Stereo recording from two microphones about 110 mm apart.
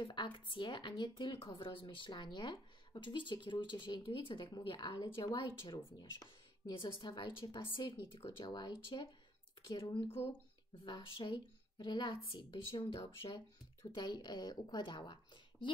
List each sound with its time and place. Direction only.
0.0 s a woman's voice: 45° left (ahead or behind)
10.0 s speech: 20° left (ahead or behind)
10.9 s a woman's voice: 50° left (ahead or behind)